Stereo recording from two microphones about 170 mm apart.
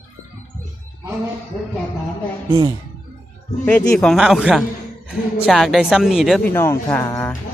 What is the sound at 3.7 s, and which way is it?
A woman's voice, 5° left (ahead or behind).